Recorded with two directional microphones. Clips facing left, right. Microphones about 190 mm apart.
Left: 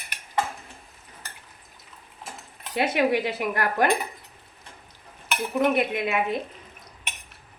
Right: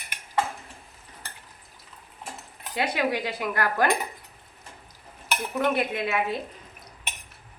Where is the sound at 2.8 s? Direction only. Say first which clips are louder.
Left 4 dB; 25° left (ahead or behind).